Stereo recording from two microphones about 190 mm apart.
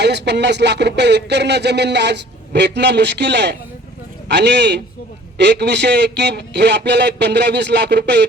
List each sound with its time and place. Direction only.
0.0 s speech: 65° right (ahead or behind)